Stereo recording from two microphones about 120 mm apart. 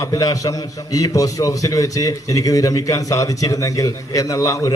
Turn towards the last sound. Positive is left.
turn(degrees=25)  # may be behind; listen again after turning